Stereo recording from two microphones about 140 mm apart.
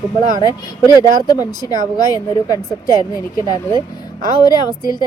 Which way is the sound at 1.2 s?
25° left (ahead or behind).